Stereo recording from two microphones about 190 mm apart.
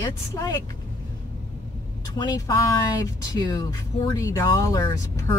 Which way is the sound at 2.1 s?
20° left (ahead or behind).